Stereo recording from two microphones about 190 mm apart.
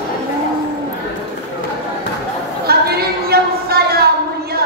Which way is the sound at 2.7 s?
55° right (ahead or behind).